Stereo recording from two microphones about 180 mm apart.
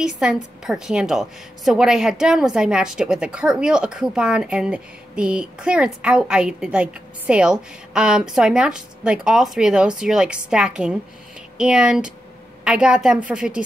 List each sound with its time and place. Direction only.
0.0 s a woman's voice: 5° right (ahead or behind)